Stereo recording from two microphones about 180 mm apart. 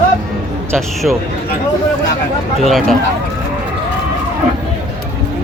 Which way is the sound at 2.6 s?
Centre (ahead or behind).